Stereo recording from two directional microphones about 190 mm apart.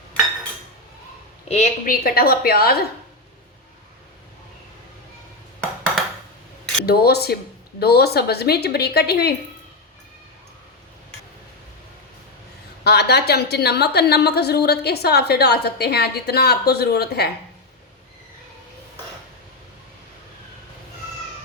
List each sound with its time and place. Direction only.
1.5 s a woman's voice: 40° left (ahead or behind); by 2.8 s 55° left (ahead or behind)
6.8 s a woman's voice: 55° left (ahead or behind)
12.8 s a woman's voice: 60° left (ahead or behind)